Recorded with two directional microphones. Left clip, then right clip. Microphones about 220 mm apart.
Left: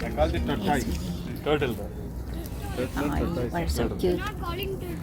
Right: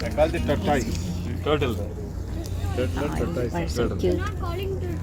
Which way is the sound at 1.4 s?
20° right (ahead or behind).